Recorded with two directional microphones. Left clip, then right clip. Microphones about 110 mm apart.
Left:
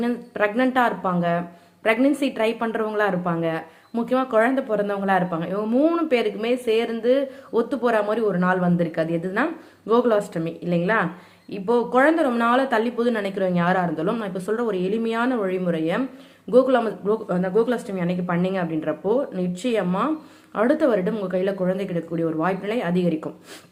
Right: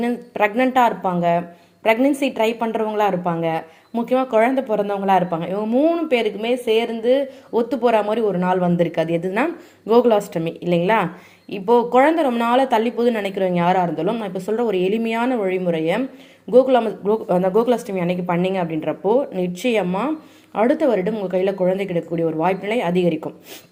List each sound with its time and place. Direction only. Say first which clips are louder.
0.0 s a woman's voice: right 3 dB; 10° right (ahead or behind)
5.5 s a woman's voice: right 2 dB; centre (ahead or behind)
7.5 s a woman's voice: right 4 dB; 15° right (ahead or behind)
8.8 s a woman's voice: right 4 dB; 30° right (ahead or behind)
16.5 s a woman's voice: right 3 dB; 5° right (ahead or behind)
17.5 s a woman's voice: right 1 dB; 40° right (ahead or behind)
17.8 s a woman's voice: right 4 dB; 25° right (ahead or behind)
20.6 s a woman's voice: right 2 dB; 5° right (ahead or behind)
21.3 s a woman's voice: right 5 dB; 20° right (ahead or behind)